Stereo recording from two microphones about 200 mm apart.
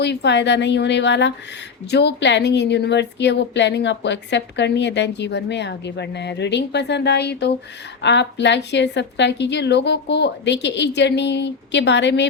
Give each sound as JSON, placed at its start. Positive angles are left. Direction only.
{"t": 0.0, "sound": "a woman's voice", "side_deg": 55}